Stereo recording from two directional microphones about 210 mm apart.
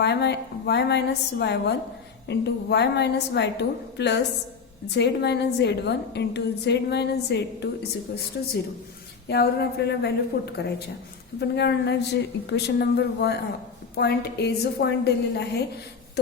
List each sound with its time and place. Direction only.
0.0 s a woman's voice: 55° left (ahead or behind)